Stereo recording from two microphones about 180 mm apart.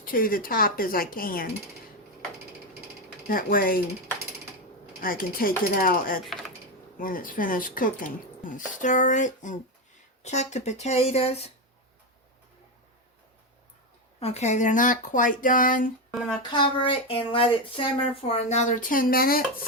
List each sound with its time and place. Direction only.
0.0 s speech: 50° left (ahead or behind)
3.2 s speech: 50° left (ahead or behind)
4.9 s speech: 50° left (ahead or behind)
6.2 s typing: centre (ahead or behind)
7.0 s speech: 50° left (ahead or behind); by 11.5 s 35° left (ahead or behind)
14.2 s speech: 35° left (ahead or behind)
16.1 s speech: 5° left (ahead or behind)
16.5 s speech: 30° left (ahead or behind); by 19.6 s 55° left (ahead or behind)